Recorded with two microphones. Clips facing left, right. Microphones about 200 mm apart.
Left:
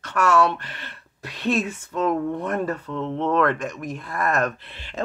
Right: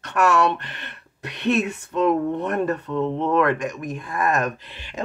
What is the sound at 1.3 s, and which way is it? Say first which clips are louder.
Speech: right 2 dB; 70° right (ahead or behind).